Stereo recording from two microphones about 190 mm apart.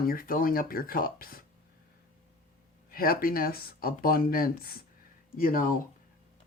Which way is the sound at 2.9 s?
50° left (ahead or behind).